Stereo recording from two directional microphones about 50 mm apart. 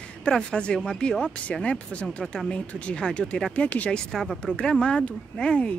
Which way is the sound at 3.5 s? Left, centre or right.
Left.